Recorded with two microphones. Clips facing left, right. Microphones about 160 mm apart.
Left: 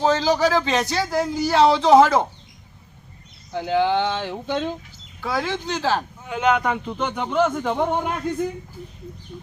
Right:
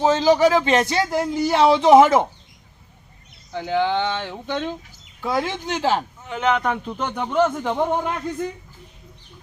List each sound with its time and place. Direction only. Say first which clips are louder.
0.1 s speech: right 3 dB; 20° right (ahead or behind)
3.5 s speech: left 1 dB; 15° left (ahead or behind)
5.3 s speech: right 1 dB; 15° right (ahead or behind)
6.2 s a man's voice: left 2 dB; 10° left (ahead or behind)